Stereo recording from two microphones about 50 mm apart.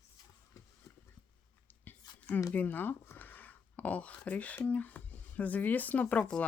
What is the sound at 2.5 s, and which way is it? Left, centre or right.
Speech, left.